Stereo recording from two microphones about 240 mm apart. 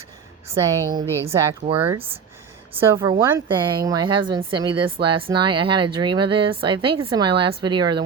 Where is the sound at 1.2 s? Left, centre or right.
Right.